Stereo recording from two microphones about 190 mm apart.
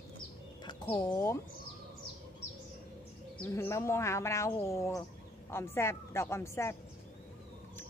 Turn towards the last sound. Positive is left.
turn(degrees=15)  # may be behind; listen again after turning